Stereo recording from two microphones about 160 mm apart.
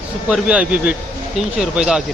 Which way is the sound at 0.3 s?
5° right (ahead or behind).